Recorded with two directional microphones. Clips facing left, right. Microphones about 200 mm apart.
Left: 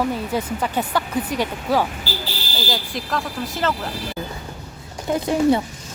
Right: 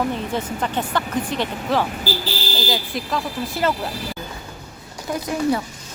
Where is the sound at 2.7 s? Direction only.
Centre (ahead or behind).